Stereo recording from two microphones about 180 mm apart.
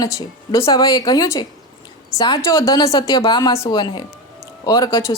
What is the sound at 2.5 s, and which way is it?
A woman's voice, 15° left (ahead or behind).